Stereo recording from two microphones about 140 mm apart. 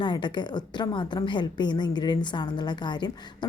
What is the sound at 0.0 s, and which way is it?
A woman's voice, 35° left (ahead or behind).